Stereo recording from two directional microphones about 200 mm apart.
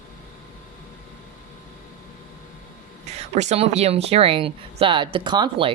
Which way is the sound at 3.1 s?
35° right (ahead or behind).